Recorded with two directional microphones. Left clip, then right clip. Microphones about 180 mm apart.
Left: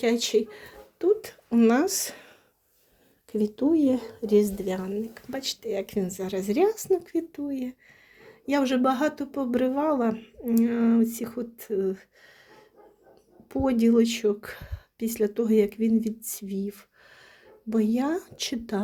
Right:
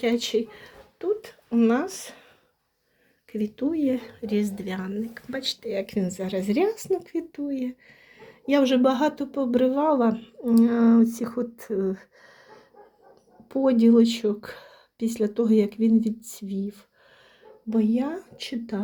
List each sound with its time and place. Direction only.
0.0 s speech: 15° left (ahead or behind); by 2.2 s 35° left (ahead or behind)
3.3 s a woman's voice: 15° left (ahead or behind)